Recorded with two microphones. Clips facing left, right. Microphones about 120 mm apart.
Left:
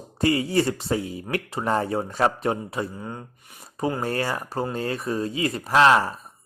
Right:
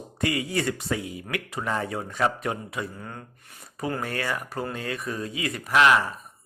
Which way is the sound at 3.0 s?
20° left (ahead or behind).